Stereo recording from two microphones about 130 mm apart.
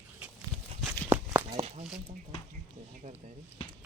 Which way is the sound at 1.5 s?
50° right (ahead or behind).